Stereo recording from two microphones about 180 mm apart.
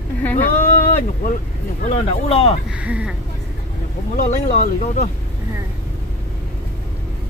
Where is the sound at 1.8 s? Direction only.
35° left (ahead or behind).